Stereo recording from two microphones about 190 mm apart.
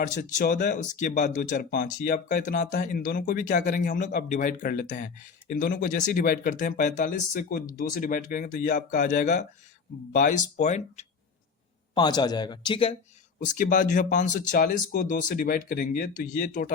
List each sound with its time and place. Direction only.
0.0 s speech: 40° left (ahead or behind)
11.9 s speech: 20° left (ahead or behind)
13.4 s speech: 40° left (ahead or behind)